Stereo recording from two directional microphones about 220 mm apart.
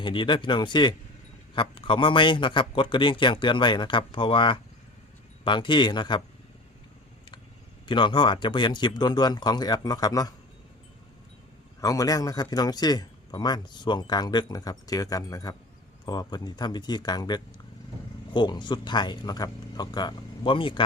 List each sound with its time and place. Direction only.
0.0 s a man's voice: 20° left (ahead or behind)
7.9 s a man's voice: 20° left (ahead or behind)
11.8 s a man's voice: 15° left (ahead or behind)